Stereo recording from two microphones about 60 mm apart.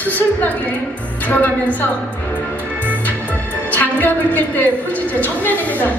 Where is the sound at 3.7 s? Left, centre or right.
Left.